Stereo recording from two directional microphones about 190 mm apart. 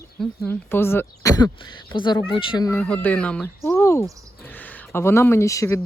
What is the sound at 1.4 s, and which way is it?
Speech, 25° left (ahead or behind).